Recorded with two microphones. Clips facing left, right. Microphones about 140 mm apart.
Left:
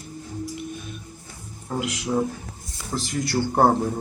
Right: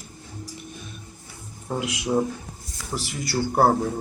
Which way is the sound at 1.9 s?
15° right (ahead or behind).